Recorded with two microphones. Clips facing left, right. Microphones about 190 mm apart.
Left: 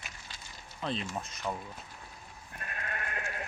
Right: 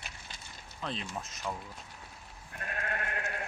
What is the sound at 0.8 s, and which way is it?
Speech, centre (ahead or behind).